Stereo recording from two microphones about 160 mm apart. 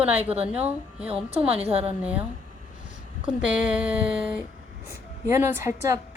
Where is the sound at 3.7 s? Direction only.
5° right (ahead or behind).